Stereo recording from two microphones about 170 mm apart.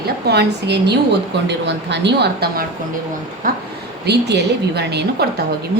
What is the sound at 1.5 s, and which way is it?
A woman's voice, 90° right.